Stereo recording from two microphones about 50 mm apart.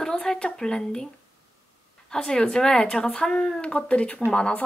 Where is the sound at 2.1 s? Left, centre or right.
Centre.